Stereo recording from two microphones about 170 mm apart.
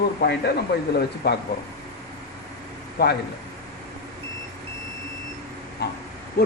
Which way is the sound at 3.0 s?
70° left (ahead or behind).